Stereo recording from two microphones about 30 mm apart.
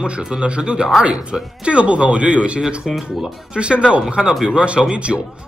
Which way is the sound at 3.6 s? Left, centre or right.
Right.